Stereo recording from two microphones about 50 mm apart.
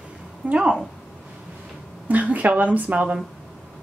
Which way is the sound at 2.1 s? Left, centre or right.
Right.